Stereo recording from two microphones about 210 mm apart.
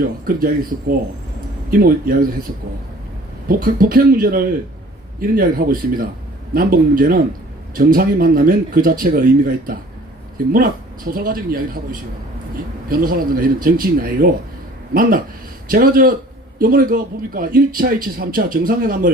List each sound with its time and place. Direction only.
0.0 s speech: 45° right (ahead or behind)
3.5 s speech: 40° right (ahead or behind)